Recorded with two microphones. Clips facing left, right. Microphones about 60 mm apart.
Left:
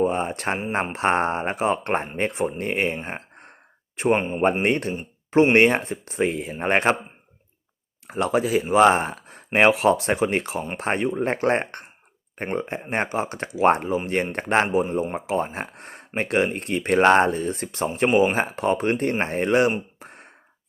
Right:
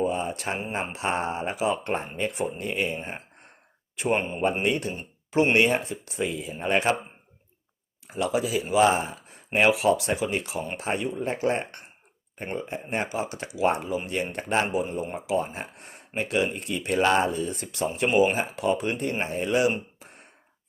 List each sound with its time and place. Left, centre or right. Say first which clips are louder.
0.0 s speech: left 4 dB; left
3.1 s a sound: left 4 dB; left
4.1 s speech: left 4 dB; left
4.6 s speech: left 4 dB; left
8.0 s a man's voice: left 4 dB; left
20.0 s a sound: left 6 dB; left